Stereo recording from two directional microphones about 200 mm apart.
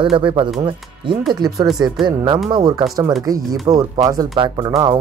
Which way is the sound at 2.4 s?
20° right (ahead or behind).